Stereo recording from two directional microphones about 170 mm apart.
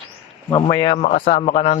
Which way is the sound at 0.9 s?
45° left (ahead or behind).